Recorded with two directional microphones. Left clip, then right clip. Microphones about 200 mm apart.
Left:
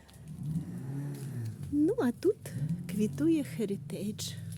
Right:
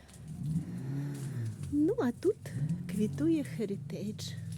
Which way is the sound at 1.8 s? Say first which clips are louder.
Left 1 dB; 15° left (ahead or behind).